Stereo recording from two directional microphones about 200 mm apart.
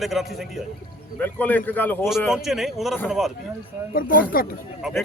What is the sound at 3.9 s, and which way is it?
Speech, 45° left (ahead or behind).